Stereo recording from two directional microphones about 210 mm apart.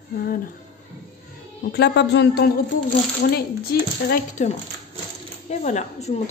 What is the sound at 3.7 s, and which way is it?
Speech, 50° left (ahead or behind).